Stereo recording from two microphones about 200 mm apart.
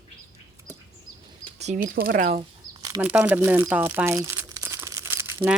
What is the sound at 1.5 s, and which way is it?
Speech, 35° right (ahead or behind).